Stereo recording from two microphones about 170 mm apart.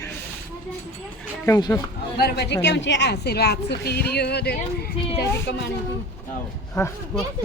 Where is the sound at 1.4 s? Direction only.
20° left (ahead or behind).